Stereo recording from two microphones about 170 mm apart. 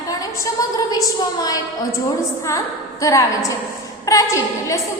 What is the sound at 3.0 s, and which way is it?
A woman's voice, 20° left (ahead or behind).